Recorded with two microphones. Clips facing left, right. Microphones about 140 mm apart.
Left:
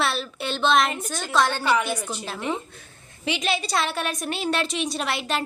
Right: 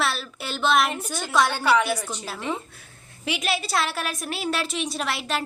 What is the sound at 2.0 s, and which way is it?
Speech, 10° left (ahead or behind).